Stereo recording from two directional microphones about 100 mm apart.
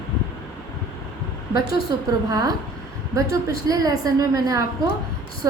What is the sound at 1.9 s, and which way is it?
A woman's voice, 40° right (ahead or behind).